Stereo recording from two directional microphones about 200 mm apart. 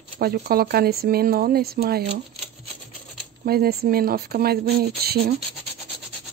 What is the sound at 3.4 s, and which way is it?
Speech, 50° right (ahead or behind).